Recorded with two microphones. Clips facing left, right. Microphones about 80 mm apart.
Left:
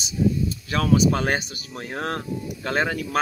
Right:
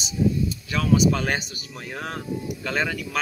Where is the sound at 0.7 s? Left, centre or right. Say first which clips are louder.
Left 1 dB; left.